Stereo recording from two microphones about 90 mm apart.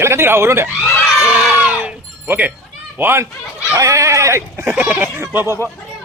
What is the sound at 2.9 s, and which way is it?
Speech, 25° right (ahead or behind).